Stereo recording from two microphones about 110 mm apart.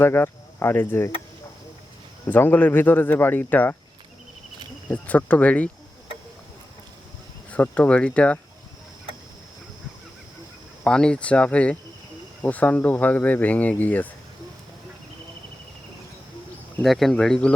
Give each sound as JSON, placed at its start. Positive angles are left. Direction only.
{"t": 0.0, "sound": "speech", "side_deg": 20}
{"t": 2.2, "sound": "speech", "side_deg": 20}
{"t": 4.9, "sound": "speech", "side_deg": 15}
{"t": 7.5, "sound": "speech", "side_deg": 15}
{"t": 10.8, "sound": "speech", "side_deg": 5}
{"t": 16.8, "sound": "speech", "side_deg": 0}